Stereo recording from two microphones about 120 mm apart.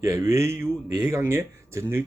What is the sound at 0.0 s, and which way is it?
Speech, 25° right (ahead or behind).